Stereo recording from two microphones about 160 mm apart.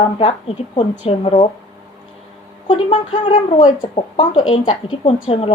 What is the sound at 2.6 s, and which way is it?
A woman's voice, 30° left (ahead or behind).